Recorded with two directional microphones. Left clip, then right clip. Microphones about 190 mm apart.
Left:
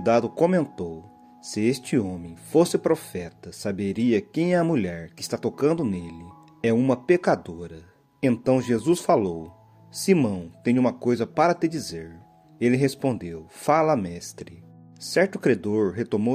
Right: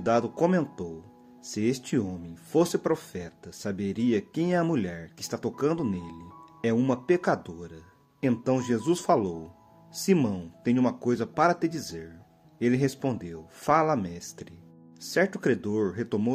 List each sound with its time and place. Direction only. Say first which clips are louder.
0.0 s speech: left 4 dB; 35° left (ahead or behind)